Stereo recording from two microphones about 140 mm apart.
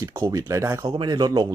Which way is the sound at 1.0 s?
30° right (ahead or behind).